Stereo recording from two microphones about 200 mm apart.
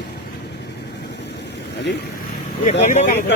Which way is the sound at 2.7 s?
35° left (ahead or behind).